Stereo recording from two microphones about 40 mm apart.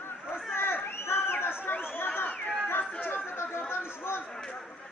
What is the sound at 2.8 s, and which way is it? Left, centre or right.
Chatter, left.